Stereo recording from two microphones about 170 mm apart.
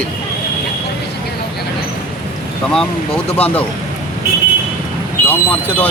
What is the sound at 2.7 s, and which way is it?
Speech, 5° left (ahead or behind).